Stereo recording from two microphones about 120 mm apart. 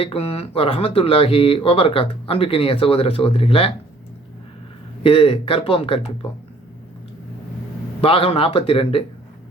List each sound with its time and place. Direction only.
0.0 s speech: 55° left (ahead or behind)
5.0 s speech: 50° left (ahead or behind)
8.0 s speech: 50° left (ahead or behind)